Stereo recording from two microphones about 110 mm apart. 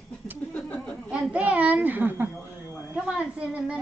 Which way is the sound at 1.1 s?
10° right (ahead or behind).